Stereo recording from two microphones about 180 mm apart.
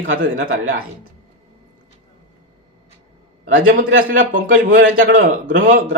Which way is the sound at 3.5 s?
50° right (ahead or behind).